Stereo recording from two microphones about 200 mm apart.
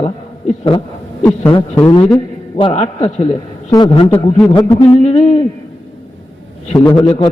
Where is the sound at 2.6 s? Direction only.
30° left (ahead or behind).